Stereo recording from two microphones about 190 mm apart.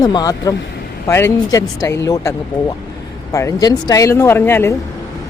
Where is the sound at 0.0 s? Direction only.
20° left (ahead or behind).